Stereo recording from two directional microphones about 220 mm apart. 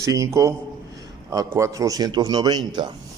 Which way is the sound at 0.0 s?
15° right (ahead or behind).